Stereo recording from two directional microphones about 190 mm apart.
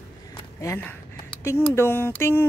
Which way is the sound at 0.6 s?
15° left (ahead or behind).